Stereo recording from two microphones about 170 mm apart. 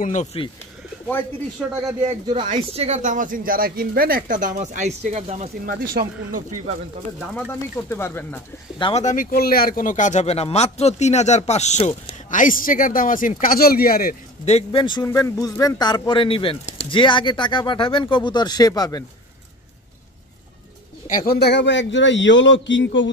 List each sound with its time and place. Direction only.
0.0 s speech: 45° left (ahead or behind)
2.5 s speech: 35° right (ahead or behind)
5.7 s speech: 55° right (ahead or behind)
7.3 s speech: 10° left (ahead or behind)
8.7 s speech: 30° left (ahead or behind)
9.0 s speech: 50° left (ahead or behind)
14.4 s speech: 35° left (ahead or behind)
15.0 s speech: 15° left (ahead or behind)
21.1 s speech: 50° left (ahead or behind)
21.4 s a man's voice: 85° left